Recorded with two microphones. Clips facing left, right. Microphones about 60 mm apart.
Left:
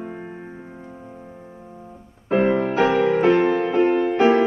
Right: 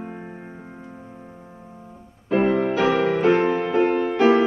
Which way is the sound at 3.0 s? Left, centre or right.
Left.